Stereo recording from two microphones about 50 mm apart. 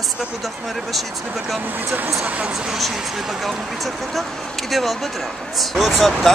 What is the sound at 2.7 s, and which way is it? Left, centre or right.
Speech, centre.